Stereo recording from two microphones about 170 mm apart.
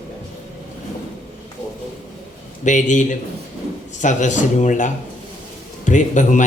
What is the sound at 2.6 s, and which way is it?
A man's voice, 45° left (ahead or behind).